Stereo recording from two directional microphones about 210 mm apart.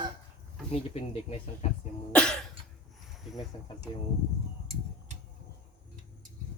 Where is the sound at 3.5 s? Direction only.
25° left (ahead or behind).